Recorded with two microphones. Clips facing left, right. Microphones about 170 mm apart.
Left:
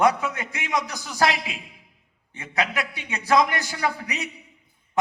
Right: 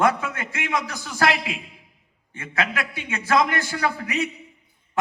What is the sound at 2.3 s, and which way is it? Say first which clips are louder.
A man's voice: even; 20° left (ahead or behind).